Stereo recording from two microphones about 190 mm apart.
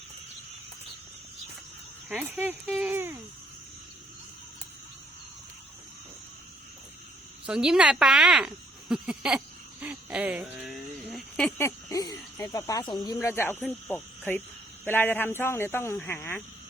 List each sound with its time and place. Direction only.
2.0 s speech: 10° right (ahead or behind)
7.4 s speech: 5° right (ahead or behind)
10.5 s a sound: centre (ahead or behind); by 12.8 s 20° left (ahead or behind)
12.9 s speech: 20° left (ahead or behind)